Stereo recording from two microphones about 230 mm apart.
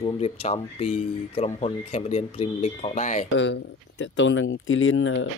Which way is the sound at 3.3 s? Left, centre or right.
Left.